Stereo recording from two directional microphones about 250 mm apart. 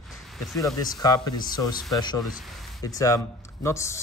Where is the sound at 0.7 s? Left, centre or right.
Centre.